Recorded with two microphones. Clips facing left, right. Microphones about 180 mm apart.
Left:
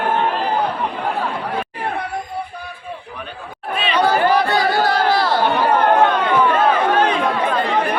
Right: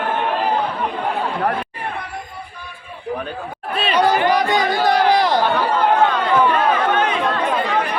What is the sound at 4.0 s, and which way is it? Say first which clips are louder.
Chatter: left 1 dB; 15° right (ahead or behind).